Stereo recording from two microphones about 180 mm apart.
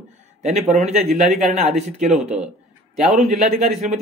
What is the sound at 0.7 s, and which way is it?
A man's voice, 40° right (ahead or behind).